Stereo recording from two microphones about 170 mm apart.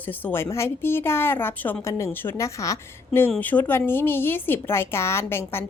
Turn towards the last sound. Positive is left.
turn(degrees=15)  # may be behind; listen again after turning